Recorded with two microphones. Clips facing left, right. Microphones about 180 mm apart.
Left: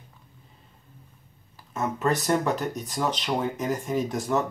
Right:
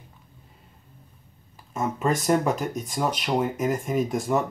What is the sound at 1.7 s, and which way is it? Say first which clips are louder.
Speech: right 1 dB; 10° right (ahead or behind).